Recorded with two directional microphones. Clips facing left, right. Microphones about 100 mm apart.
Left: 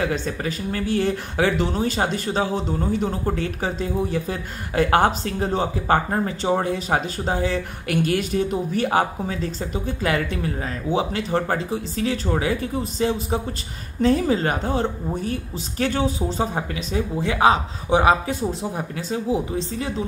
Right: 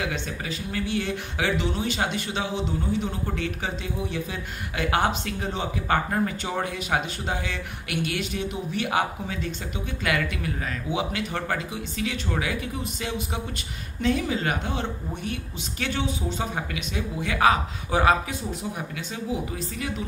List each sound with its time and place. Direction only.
0.0 s speech: 40° left (ahead or behind); by 18.1 s 25° left (ahead or behind)
18.4 s speech: 40° left (ahead or behind)